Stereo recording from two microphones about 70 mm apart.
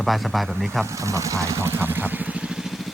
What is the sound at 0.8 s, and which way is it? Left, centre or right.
Vehicle, right.